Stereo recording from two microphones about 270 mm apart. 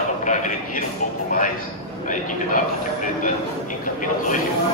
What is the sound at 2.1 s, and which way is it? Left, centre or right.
A man's voice, left.